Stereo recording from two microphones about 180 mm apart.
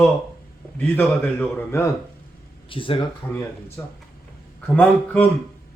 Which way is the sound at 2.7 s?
30° left (ahead or behind).